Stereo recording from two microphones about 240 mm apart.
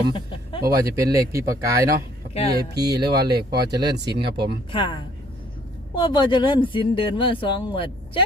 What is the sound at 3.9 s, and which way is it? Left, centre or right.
Speech, right.